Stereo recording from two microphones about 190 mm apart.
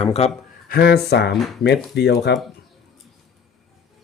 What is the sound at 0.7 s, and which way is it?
Speech, 60° left (ahead or behind).